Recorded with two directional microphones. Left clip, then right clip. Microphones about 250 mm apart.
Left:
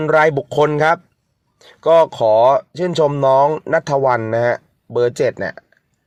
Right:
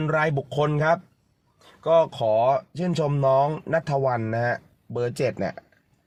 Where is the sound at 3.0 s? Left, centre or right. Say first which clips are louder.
Left 7 dB; left.